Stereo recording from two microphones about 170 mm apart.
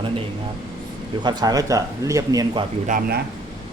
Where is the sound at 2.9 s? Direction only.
60° right (ahead or behind).